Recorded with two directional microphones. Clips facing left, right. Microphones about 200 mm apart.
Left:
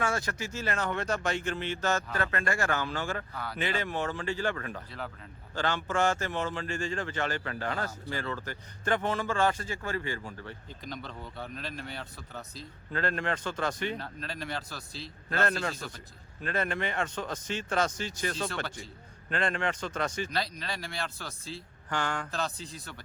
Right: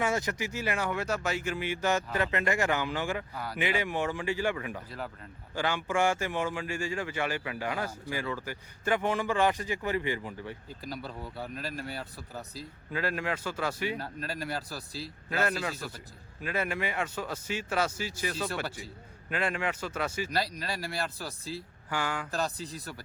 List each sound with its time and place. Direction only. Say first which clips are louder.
0.0 s speech: right 2 dB; 20° right (ahead or behind)
21.0 s speech: right 3 dB; 35° right (ahead or behind)
21.5 s speech: left 1 dB; 5° right (ahead or behind)
22.3 s speech: right 2 dB; 35° right (ahead or behind)